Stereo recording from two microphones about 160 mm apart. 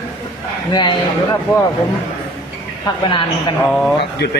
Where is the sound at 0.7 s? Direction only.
30° left (ahead or behind).